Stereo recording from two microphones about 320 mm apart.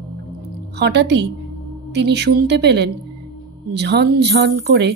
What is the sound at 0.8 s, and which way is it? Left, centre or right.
Speech, right.